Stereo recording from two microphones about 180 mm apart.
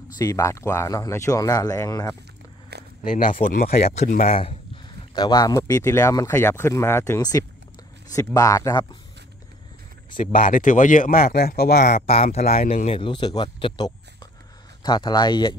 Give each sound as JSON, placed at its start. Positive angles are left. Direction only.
{"t": 0.2, "sound": "speech", "side_deg": 15}
{"t": 3.0, "sound": "speech", "side_deg": 45}
{"t": 3.6, "sound": "speech", "side_deg": 35}
{"t": 5.1, "sound": "speech", "side_deg": 20}
{"t": 10.1, "sound": "speech", "side_deg": 50}
{"t": 11.8, "sound": "speech", "side_deg": 35}